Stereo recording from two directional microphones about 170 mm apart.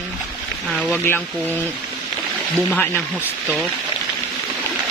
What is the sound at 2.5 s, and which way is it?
Speech, 5° left (ahead or behind).